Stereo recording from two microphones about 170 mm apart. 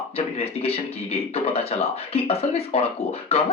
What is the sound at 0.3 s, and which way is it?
Speech, 35° left (ahead or behind).